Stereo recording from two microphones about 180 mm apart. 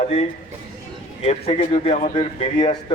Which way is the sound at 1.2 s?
35° left (ahead or behind).